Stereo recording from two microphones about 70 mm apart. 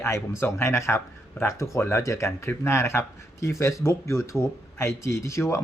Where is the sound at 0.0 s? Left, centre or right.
Left.